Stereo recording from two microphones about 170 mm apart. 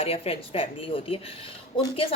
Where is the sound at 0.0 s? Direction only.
35° left (ahead or behind).